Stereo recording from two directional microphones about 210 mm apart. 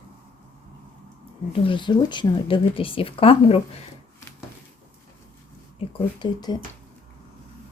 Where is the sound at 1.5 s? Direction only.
25° left (ahead or behind).